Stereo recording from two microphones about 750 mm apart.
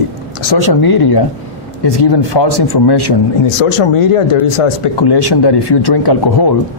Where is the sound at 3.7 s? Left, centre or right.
Left.